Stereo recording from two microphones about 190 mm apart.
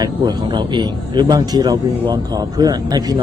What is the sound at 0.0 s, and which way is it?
Speech, 20° right (ahead or behind).